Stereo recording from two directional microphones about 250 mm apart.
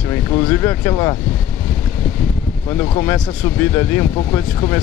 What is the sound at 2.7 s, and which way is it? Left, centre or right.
Speech, centre.